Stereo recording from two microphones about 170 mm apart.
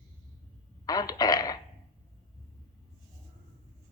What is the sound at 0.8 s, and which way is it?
Fart, 20° left (ahead or behind).